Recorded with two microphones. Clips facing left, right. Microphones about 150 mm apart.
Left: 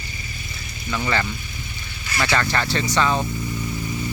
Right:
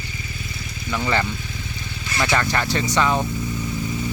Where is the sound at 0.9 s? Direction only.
20° right (ahead or behind).